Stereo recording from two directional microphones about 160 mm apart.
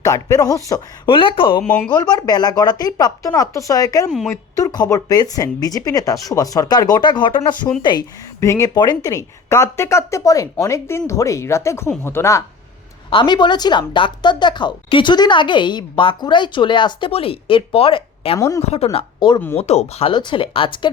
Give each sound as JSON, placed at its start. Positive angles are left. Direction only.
{"t": 0.0, "sound": "a woman's voice", "side_deg": 20}
{"t": 1.0, "sound": "a woman's voice", "side_deg": 30}
{"t": 13.1, "sound": "a woman's voice", "side_deg": 30}
{"t": 18.3, "sound": "a woman's voice", "side_deg": 20}
{"t": 18.9, "sound": "speech", "side_deg": 30}
{"t": 19.5, "sound": "speech", "side_deg": 40}